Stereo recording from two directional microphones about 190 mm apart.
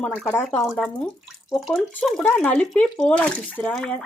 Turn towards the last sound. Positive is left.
turn(degrees=5)  # may be behind; listen again after turning